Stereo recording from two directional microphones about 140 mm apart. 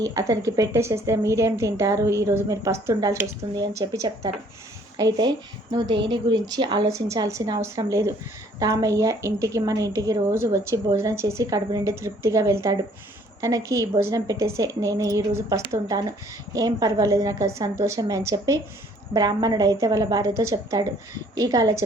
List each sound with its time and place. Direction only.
0.0 s a woman's voice: 25° right (ahead or behind)